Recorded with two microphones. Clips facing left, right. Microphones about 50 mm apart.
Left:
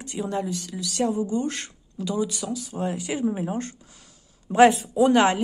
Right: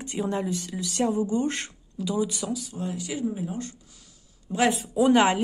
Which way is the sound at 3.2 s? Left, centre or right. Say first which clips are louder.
Left 5 dB; left.